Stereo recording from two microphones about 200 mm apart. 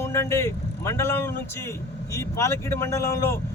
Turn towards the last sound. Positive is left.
turn(degrees=15)  # may be behind; listen again after turning